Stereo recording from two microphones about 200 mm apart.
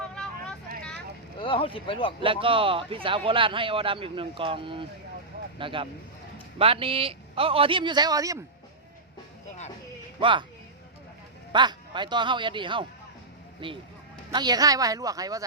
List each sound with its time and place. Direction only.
1.4 s speech: 25° left (ahead or behind)
2.2 s a man's voice: 25° right (ahead or behind)
10.2 s speech: 25° right (ahead or behind)
11.5 s a man's voice: 20° right (ahead or behind)